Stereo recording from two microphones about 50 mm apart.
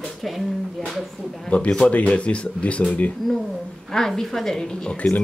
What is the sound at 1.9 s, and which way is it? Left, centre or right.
Speech, left.